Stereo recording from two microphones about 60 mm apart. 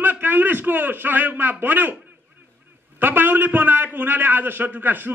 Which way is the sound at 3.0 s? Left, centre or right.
Right.